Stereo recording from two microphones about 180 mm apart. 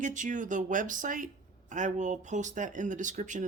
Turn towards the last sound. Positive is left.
turn(degrees=-45)  # may be behind; listen again after turning